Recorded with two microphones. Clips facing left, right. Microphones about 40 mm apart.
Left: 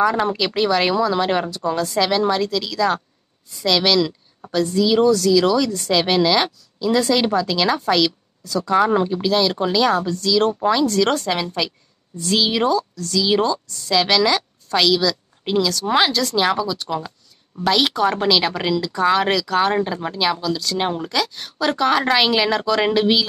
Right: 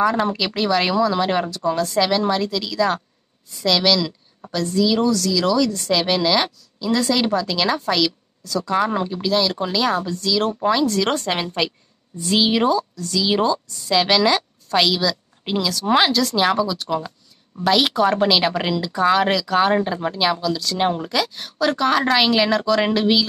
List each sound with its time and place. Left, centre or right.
0.0 s a woman's voice: centre
11.6 s a woman's voice: right
12.3 s a woman's voice: centre